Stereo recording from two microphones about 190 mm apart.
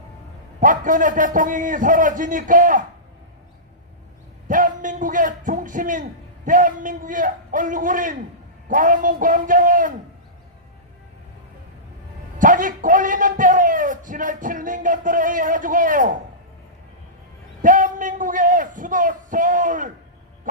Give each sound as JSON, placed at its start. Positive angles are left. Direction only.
{"t": 0.6, "sound": "a man's voice", "side_deg": -45}
{"t": 4.4, "sound": "a man's voice", "side_deg": -45}
{"t": 12.4, "sound": "a man's voice", "side_deg": -45}
{"t": 17.6, "sound": "a man's voice", "side_deg": -45}